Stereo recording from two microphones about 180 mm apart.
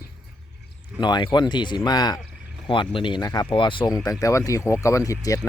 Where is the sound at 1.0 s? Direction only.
25° left (ahead or behind).